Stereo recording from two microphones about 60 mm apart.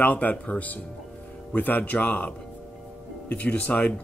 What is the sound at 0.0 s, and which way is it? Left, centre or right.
Speech, left.